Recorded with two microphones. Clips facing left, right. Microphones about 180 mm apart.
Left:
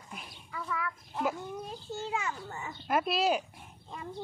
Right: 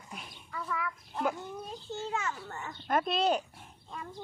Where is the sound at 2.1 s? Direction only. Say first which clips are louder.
Even; 10° left (ahead or behind).